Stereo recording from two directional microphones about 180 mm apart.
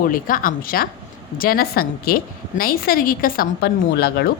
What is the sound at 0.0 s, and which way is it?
A woman's voice, 50° left (ahead or behind).